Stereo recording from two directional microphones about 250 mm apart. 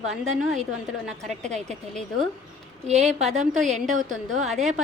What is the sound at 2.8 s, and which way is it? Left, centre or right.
A woman's voice, right.